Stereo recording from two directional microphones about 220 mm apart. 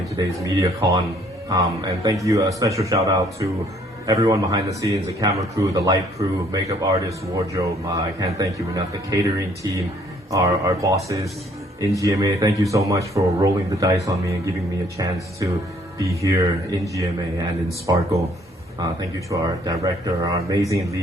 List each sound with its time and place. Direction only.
0.2 s speech: 15° right (ahead or behind)
10.3 s speech: 15° right (ahead or behind)
14.9 s speech: 15° right (ahead or behind)